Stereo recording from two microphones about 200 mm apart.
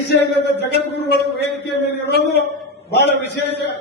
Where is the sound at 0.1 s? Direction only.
60° left (ahead or behind).